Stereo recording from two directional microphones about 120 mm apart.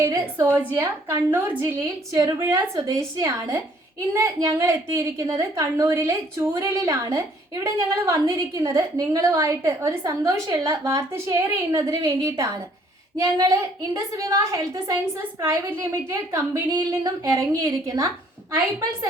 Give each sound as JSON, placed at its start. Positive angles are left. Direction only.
{"t": 0.0, "sound": "a woman's voice", "side_deg": -30}
{"t": 0.7, "sound": "a woman's voice", "side_deg": -20}
{"t": 1.6, "sound": "a woman's voice", "side_deg": -30}